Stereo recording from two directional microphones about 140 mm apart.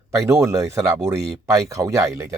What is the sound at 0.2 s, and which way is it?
Speech, 20° right (ahead or behind).